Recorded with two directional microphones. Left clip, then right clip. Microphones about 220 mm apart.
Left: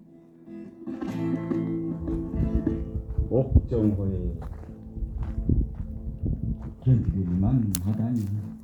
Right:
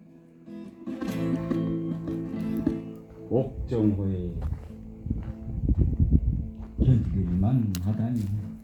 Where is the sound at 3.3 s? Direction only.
45° right (ahead or behind).